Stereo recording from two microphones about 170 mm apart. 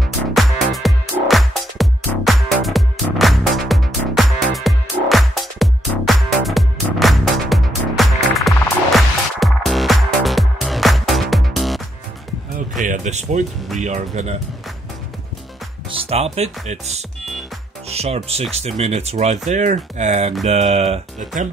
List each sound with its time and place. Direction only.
0.0 s music: centre (ahead or behind)
12.8 s a sound: 45° right (ahead or behind)
13.7 s speech: 45° right (ahead or behind)
15.9 s speech: 35° right (ahead or behind)